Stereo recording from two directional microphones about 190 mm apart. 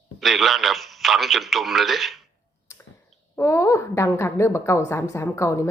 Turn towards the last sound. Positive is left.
turn(degrees=15)  # may be behind; listen again after turning